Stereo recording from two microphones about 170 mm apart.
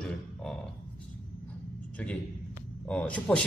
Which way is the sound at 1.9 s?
5° left (ahead or behind).